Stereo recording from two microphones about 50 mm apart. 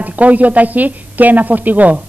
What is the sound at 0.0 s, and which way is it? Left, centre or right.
A woman's voice, right.